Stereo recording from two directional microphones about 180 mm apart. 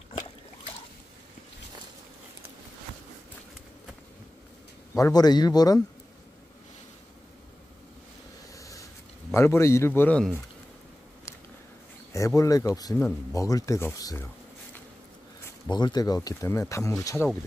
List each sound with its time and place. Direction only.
4.9 s a man's voice: 20° left (ahead or behind)
8.5 s a sound: 20° left (ahead or behind)
9.3 s speech: 15° left (ahead or behind)
12.1 s a man's voice: 15° left (ahead or behind)
15.7 s a man's voice: 25° left (ahead or behind)